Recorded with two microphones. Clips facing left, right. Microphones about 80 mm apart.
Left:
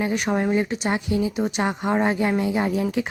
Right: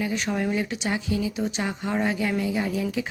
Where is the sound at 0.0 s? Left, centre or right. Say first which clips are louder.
Left 4 dB; left.